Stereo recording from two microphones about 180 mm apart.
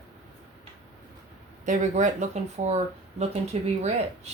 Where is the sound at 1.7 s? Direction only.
40° right (ahead or behind).